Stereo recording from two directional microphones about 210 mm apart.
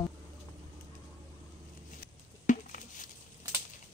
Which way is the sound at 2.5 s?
40° left (ahead or behind).